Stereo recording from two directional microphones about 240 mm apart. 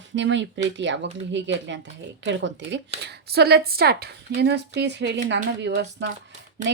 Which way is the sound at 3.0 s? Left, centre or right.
Right.